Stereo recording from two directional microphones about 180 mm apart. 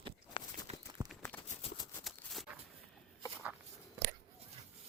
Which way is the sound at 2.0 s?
Centre (ahead or behind).